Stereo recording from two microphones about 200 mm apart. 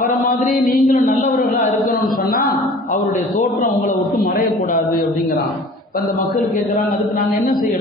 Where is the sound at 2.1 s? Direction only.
45° left (ahead or behind).